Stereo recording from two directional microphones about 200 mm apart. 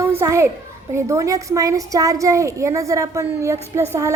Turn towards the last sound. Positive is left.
turn(degrees=-15)  # may be behind; listen again after turning